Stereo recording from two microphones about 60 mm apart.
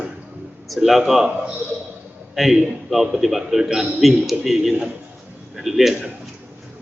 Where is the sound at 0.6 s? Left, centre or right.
Centre.